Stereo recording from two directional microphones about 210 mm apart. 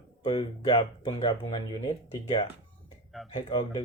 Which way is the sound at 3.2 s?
25° left (ahead or behind).